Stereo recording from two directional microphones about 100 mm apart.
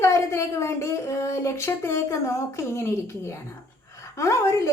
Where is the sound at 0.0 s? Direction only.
30° left (ahead or behind).